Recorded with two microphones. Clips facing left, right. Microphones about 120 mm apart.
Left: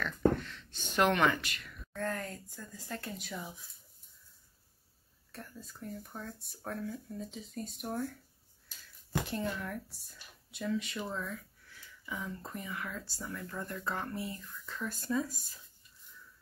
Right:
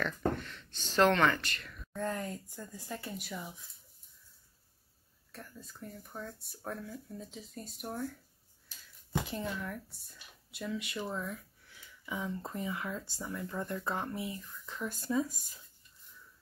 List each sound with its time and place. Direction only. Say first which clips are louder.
0.0 s a sound: left 4 dB; centre (ahead or behind)
0.8 s speech: right 2 dB; 15° left (ahead or behind)
2.0 s speech: right 1 dB; 15° right (ahead or behind)
3.0 s speech: even; 5° right (ahead or behind)
5.3 s speech: left 1 dB; centre (ahead or behind)
12.1 s speech: right 3 dB; 20° right (ahead or behind)